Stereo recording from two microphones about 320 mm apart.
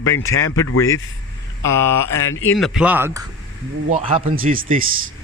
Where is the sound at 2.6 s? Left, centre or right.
Centre.